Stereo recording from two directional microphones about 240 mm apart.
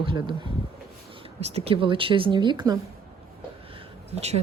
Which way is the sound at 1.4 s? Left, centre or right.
Right.